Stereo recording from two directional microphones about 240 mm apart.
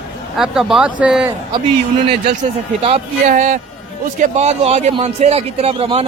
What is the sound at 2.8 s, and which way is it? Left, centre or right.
Speech, right.